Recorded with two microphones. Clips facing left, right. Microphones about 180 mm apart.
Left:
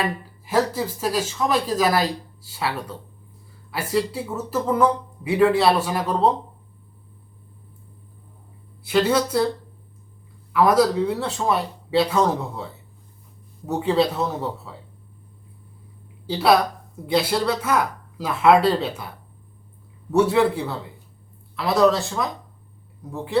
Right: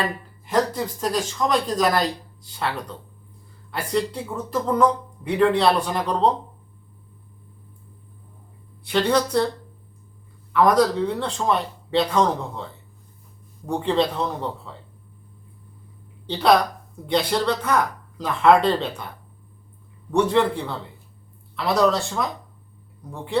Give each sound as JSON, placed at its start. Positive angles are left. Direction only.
{"t": 0.4, "sound": "speech", "side_deg": 5}
{"t": 8.8, "sound": "speech", "side_deg": 5}
{"t": 10.5, "sound": "speech", "side_deg": 5}
{"t": 13.7, "sound": "speech", "side_deg": 5}
{"t": 16.2, "sound": "speech", "side_deg": 5}